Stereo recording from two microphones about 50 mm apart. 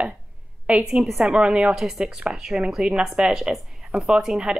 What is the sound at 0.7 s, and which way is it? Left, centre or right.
A woman's voice, right.